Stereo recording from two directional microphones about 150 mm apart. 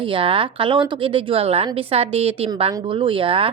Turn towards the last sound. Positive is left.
turn(degrees=-40)  # may be behind; listen again after turning